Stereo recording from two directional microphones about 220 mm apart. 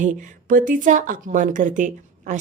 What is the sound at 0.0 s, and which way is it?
Speech, 35° right (ahead or behind).